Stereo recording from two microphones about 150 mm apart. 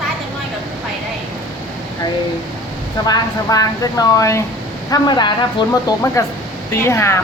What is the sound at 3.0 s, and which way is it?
Speech, 25° left (ahead or behind).